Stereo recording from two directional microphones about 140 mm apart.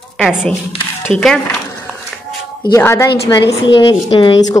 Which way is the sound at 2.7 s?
20° left (ahead or behind).